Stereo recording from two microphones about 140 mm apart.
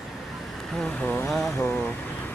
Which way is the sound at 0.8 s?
10° left (ahead or behind).